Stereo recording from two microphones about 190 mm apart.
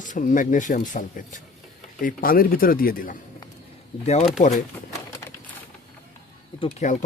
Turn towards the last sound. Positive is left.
turn(degrees=40)  # may be behind; listen again after turning